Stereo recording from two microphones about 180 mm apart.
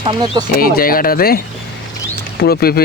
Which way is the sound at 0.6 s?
55° left (ahead or behind).